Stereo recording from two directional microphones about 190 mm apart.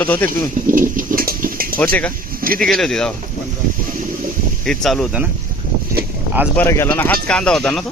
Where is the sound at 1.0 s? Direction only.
50° right (ahead or behind).